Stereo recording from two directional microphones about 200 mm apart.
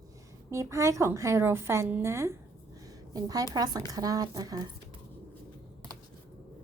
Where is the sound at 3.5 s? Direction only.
20° right (ahead or behind).